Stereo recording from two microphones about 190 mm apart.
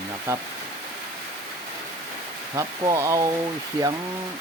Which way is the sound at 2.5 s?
15° right (ahead or behind).